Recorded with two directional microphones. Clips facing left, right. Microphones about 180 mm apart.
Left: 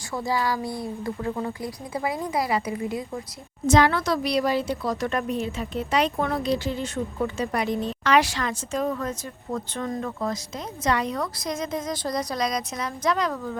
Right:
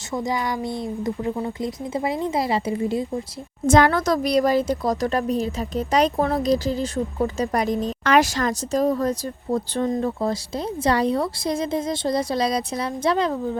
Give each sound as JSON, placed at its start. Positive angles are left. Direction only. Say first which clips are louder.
{"t": 0.1, "sound": "a woman's voice", "louder": "right 1 dB", "side_deg": -20}
{"t": 3.7, "sound": "a woman's voice", "louder": "right 3 dB", "side_deg": -50}